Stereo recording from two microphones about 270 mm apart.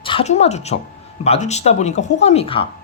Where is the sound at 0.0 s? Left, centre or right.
Centre.